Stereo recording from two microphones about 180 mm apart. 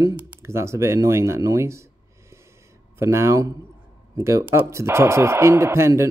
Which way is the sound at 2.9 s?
15° right (ahead or behind).